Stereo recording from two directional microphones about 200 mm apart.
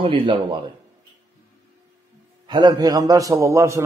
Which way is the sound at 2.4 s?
20° right (ahead or behind).